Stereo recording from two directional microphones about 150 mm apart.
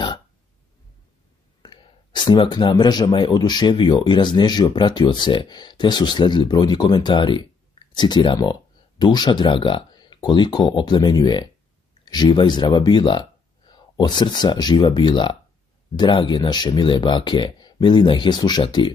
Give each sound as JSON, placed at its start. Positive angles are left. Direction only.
{"t": 1.6, "sound": "speech", "side_deg": 30}